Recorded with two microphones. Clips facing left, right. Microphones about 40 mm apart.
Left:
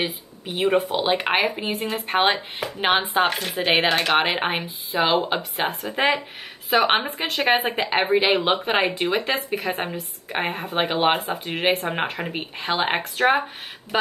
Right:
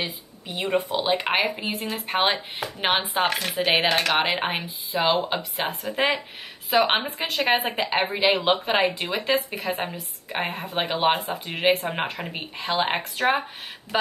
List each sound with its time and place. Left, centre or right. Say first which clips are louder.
0.5 s speech: left 4 dB; centre